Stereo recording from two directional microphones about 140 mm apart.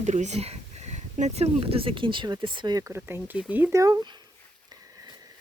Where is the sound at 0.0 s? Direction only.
55° right (ahead or behind); by 4.2 s 30° right (ahead or behind).